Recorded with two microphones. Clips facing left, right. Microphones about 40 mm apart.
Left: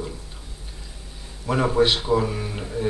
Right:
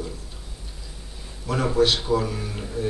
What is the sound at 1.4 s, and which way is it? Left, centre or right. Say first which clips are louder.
A man's voice: left 1 dB; centre.